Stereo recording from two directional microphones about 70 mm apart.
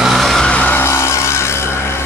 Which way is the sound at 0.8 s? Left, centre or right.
Left.